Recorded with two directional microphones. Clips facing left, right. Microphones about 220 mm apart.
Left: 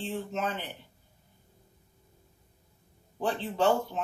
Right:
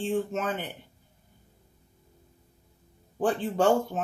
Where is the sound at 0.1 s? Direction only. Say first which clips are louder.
Right 4 dB; 50° right (ahead or behind).